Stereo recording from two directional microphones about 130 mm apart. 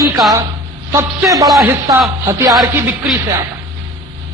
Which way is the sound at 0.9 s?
25° right (ahead or behind).